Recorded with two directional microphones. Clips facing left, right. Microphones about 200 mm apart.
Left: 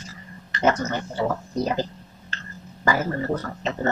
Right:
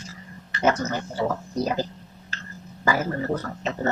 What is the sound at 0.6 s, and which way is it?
Speech, 5° right (ahead or behind).